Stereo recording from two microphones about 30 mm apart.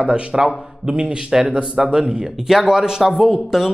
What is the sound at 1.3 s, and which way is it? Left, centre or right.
Speech, centre.